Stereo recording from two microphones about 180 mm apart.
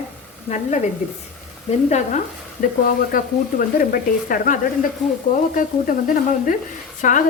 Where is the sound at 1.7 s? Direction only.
40° left (ahead or behind).